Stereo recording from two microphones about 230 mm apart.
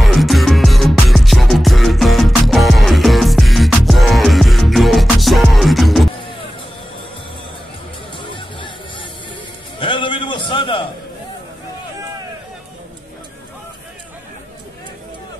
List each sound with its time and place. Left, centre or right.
0.0 s music: centre
8.2 s music: left
9.8 s a sound: left